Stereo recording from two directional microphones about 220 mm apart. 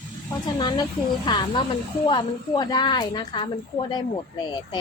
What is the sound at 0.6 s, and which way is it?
A woman's voice, 20° left (ahead or behind).